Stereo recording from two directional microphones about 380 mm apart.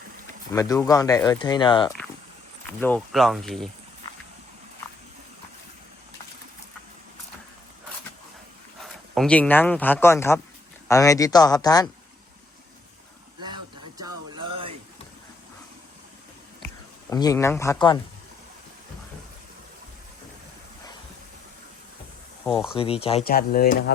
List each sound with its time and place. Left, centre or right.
0.5 s speech: centre
8.8 s speech: centre
17.1 s speech: centre
22.7 s speech: centre